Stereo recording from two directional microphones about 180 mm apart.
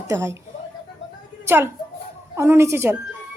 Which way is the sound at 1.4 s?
15° right (ahead or behind).